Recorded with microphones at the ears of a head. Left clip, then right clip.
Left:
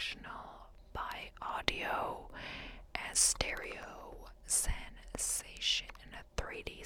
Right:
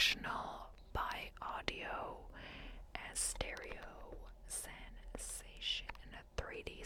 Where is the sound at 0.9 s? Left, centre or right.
Centre.